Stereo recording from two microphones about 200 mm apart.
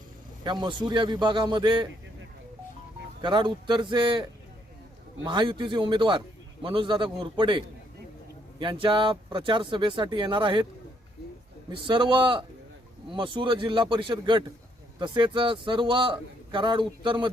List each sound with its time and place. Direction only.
0.4 s a man's voice: 20° right (ahead or behind)
3.2 s a man's voice: 25° right (ahead or behind)
11.7 s a man's voice: 25° right (ahead or behind)